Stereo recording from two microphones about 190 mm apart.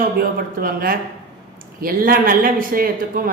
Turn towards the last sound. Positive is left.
turn(degrees=-50)  # may be behind; listen again after turning